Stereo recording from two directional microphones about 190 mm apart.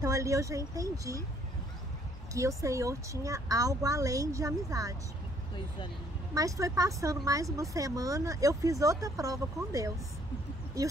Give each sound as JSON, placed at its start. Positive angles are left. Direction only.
{"t": 0.0, "sound": "a woman's voice", "side_deg": -15}
{"t": 2.3, "sound": "a woman's voice", "side_deg": -15}
{"t": 6.3, "sound": "a woman's voice", "side_deg": -15}